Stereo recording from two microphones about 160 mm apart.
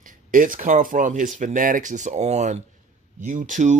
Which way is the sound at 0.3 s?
55° right (ahead or behind).